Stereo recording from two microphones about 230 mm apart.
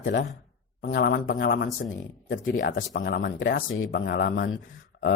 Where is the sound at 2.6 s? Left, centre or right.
Left.